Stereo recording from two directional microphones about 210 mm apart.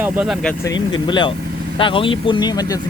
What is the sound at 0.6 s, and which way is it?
Speech, 20° left (ahead or behind).